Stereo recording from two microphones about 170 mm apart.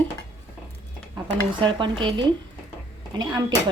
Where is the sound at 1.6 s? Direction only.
30° right (ahead or behind).